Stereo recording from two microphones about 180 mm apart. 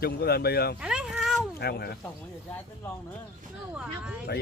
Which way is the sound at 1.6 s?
65° left (ahead or behind).